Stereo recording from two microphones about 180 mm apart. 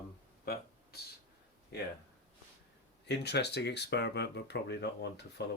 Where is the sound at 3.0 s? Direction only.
70° left (ahead or behind).